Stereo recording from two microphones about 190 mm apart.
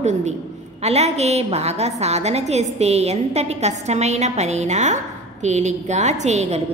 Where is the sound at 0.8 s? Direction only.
35° right (ahead or behind).